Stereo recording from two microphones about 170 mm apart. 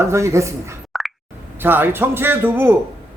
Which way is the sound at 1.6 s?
10° right (ahead or behind).